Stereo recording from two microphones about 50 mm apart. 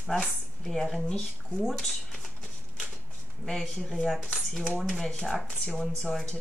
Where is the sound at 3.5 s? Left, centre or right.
Centre.